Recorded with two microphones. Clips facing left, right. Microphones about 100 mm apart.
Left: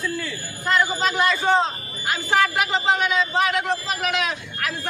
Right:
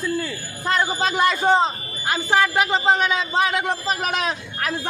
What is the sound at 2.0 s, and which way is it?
A man's voice, 20° right (ahead or behind).